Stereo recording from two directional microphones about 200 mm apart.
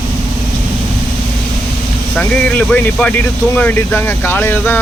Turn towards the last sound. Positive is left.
turn(degrees=10)  # may be behind; listen again after turning